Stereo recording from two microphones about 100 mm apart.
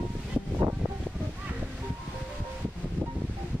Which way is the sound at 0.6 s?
15° right (ahead or behind).